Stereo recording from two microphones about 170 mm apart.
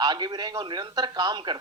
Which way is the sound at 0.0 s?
25° right (ahead or behind).